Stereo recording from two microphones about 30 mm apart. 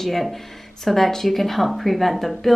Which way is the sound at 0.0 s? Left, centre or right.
Centre.